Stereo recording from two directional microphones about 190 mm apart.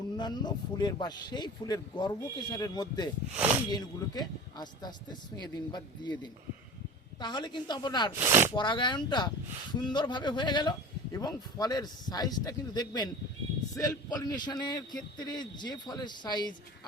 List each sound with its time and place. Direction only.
0.2 s a man's voice: 25° left (ahead or behind)
3.3 s speech: 10° right (ahead or behind)
3.7 s a man's voice: 20° left (ahead or behind)
7.2 s a man's voice: 25° left (ahead or behind)
8.2 s speech: 15° right (ahead or behind)
8.5 s a man's voice: 25° left (ahead or behind)